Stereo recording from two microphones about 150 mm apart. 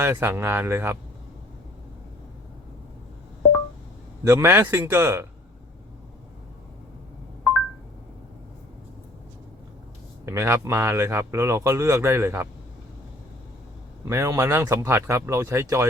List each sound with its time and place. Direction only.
0.0 s speech: 15° right (ahead or behind)
4.2 s speech: 20° right (ahead or behind)
10.2 s speech: 20° right (ahead or behind)
14.0 s speech: 20° right (ahead or behind)